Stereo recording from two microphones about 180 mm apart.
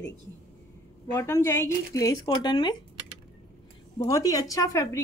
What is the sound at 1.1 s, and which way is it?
Speech, 15° left (ahead or behind).